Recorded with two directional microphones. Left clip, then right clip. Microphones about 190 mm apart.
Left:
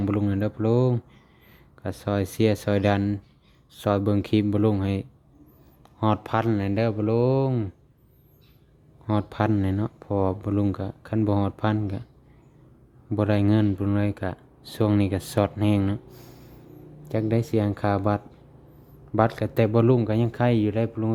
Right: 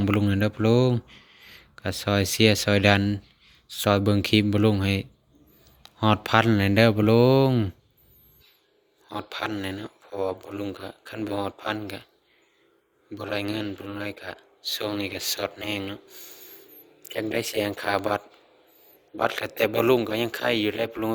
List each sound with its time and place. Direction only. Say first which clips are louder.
0.0 s speech: right 2 dB; 10° left (ahead or behind)
9.3 s speech: left 1 dB; 15° left (ahead or behind)
13.1 s speech: left 6 dB; 15° left (ahead or behind)
19.4 s speech: left 1 dB; centre (ahead or behind)